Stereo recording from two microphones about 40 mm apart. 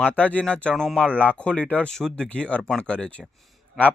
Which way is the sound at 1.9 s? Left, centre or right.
Centre.